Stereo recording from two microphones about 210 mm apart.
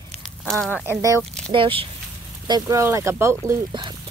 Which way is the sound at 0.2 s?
Centre (ahead or behind).